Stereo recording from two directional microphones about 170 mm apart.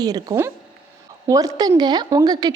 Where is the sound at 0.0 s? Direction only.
20° right (ahead or behind).